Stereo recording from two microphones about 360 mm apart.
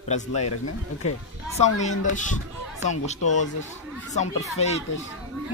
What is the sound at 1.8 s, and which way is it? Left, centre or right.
Speech, left.